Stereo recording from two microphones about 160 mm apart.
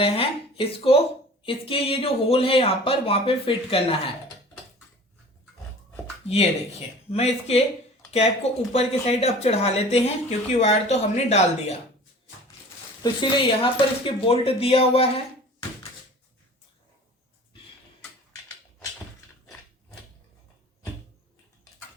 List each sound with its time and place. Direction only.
0.0 s speech: 35° left (ahead or behind)
7.1 s speech: 40° left (ahead or behind)
8.7 s speech: 40° left (ahead or behind)
13.0 s speech: 30° left (ahead or behind)